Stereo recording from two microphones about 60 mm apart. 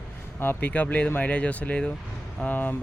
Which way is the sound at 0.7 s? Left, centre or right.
Left.